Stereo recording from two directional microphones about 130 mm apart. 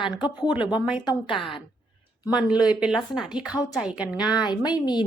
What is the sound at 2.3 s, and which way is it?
A woman's voice, 5° right (ahead or behind).